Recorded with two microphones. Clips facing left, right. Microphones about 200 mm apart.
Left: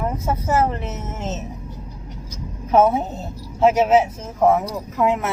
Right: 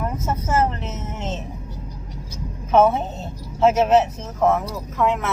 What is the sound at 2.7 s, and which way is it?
A woman's voice, 10° left (ahead or behind).